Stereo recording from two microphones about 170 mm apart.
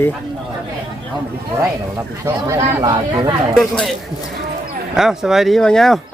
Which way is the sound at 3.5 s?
Centre (ahead or behind).